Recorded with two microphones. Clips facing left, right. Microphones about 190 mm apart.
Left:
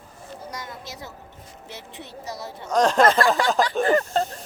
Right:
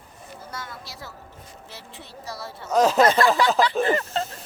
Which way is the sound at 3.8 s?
40° left (ahead or behind).